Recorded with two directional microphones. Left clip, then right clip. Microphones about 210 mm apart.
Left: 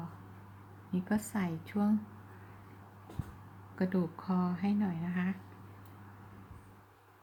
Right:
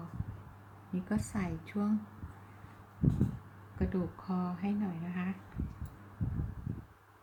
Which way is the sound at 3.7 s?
20° left (ahead or behind).